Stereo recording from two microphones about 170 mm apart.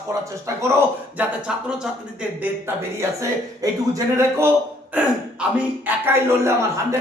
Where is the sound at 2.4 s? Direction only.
15° right (ahead or behind).